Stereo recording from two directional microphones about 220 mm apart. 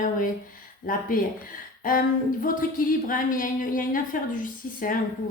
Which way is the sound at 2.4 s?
40° left (ahead or behind).